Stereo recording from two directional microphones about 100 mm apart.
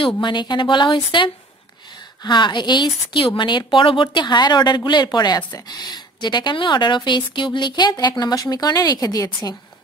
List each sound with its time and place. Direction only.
0.0 s a woman's voice: 50° left (ahead or behind)